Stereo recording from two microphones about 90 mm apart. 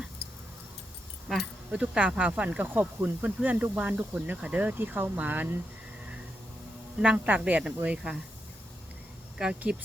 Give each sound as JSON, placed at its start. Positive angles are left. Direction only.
{"t": 1.3, "sound": "a woman's voice", "side_deg": -5}
{"t": 7.0, "sound": "a woman's voice", "side_deg": -10}
{"t": 9.4, "sound": "a woman's voice", "side_deg": -10}